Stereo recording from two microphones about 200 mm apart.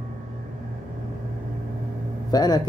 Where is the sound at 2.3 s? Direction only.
20° left (ahead or behind).